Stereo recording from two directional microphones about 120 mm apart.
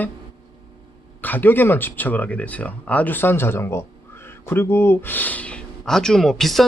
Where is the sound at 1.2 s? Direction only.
15° left (ahead or behind).